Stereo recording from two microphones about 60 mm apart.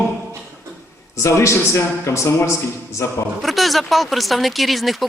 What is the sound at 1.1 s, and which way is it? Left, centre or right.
Speech, left.